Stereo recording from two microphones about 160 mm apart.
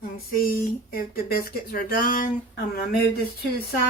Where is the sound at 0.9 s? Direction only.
70° left (ahead or behind).